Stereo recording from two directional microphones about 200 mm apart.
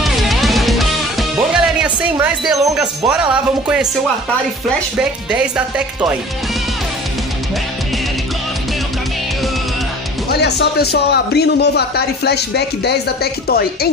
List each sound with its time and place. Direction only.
0.0 s music: centre (ahead or behind)
1.8 s speech: 5° right (ahead or behind)
4.9 s speech: 5° right (ahead or behind)
10.3 s a man's voice: 55° left (ahead or behind)